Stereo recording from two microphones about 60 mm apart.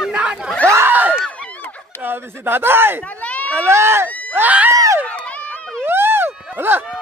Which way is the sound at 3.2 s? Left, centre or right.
Left.